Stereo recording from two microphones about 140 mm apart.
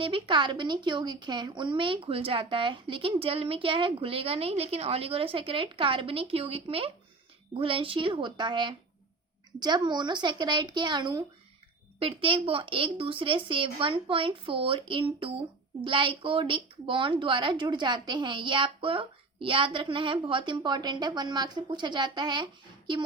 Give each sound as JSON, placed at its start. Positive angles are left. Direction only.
{"t": 0.0, "sound": "a woman's voice", "side_deg": -35}